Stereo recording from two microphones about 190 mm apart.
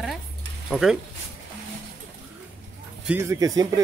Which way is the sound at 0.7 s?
5° right (ahead or behind).